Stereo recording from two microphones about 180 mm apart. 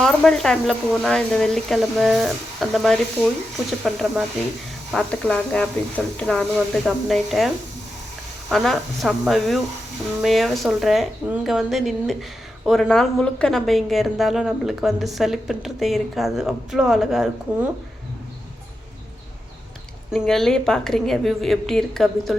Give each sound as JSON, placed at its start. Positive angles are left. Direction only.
{"t": 0.0, "sound": "a woman's voice", "side_deg": 5}
{"t": 20.1, "sound": "a woman's voice", "side_deg": 0}